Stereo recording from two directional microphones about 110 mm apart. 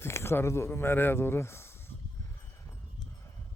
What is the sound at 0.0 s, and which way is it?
Speech, 25° left (ahead or behind).